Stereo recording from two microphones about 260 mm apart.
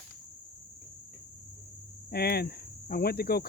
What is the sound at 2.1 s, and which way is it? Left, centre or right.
Cricket, left.